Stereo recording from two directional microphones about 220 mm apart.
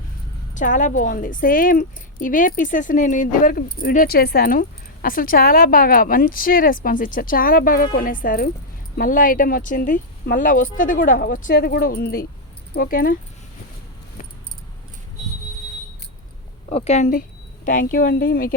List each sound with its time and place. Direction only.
0.5 s speech: 35° left (ahead or behind)
16.6 s speech: 30° left (ahead or behind)